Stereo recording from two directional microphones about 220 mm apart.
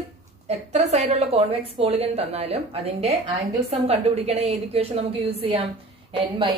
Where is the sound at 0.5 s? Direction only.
30° right (ahead or behind).